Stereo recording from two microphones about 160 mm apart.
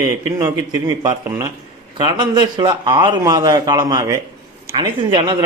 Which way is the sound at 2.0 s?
25° right (ahead or behind).